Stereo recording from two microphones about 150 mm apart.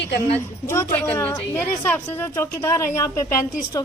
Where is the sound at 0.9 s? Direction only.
15° left (ahead or behind).